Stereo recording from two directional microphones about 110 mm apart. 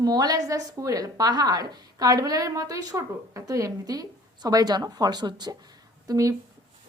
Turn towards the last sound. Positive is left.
turn(degrees=-30)  # may be behind; listen again after turning